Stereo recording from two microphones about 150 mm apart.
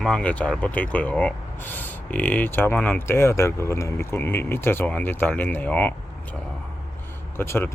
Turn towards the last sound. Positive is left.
turn(degrees=15)  # may be behind; listen again after turning